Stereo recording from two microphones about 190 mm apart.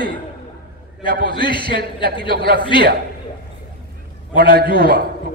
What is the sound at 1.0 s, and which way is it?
Speech, 45° right (ahead or behind).